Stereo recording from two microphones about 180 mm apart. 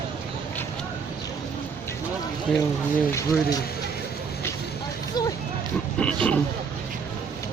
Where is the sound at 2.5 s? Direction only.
Centre (ahead or behind).